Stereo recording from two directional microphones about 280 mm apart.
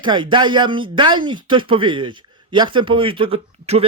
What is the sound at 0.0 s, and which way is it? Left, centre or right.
Speech, centre.